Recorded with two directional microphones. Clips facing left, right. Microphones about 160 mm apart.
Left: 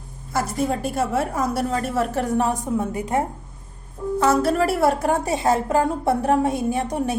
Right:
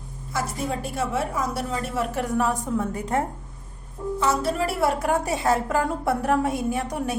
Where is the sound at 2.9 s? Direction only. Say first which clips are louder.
Left 2 dB; 10° left (ahead or behind).